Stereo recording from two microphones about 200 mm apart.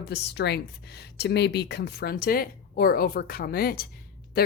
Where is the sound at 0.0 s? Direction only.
55° left (ahead or behind).